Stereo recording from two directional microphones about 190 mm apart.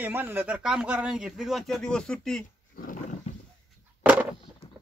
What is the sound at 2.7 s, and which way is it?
Dog, 45° left (ahead or behind).